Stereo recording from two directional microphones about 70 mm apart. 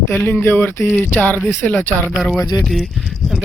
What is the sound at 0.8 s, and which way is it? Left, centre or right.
Speech, centre.